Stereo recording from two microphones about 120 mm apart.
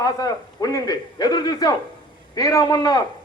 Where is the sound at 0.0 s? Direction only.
30° left (ahead or behind).